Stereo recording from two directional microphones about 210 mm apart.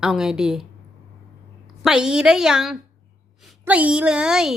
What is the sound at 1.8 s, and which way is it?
A woman's voice, 5° right (ahead or behind).